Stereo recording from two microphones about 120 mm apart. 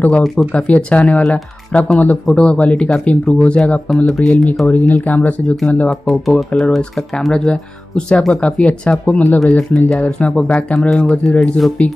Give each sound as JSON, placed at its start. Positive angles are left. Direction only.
{"t": 0.5, "sound": "speech", "side_deg": 10}
{"t": 4.6, "sound": "speech", "side_deg": 15}